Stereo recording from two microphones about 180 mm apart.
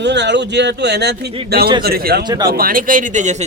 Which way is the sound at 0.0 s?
75° right (ahead or behind).